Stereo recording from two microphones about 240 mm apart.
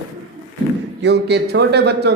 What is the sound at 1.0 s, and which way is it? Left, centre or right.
A man's voice, right.